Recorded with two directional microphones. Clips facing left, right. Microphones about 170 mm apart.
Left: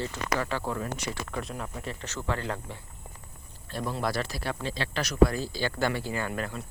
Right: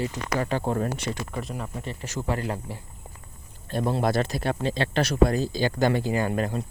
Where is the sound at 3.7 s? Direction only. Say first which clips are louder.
Right 6 dB; 25° right (ahead or behind).